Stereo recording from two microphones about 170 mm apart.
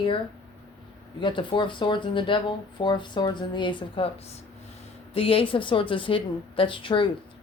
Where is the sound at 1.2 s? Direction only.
30° left (ahead or behind).